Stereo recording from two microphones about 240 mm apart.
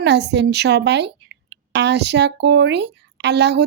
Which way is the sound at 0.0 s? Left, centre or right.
Right.